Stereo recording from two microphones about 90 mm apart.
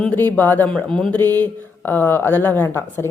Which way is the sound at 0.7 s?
10° left (ahead or behind).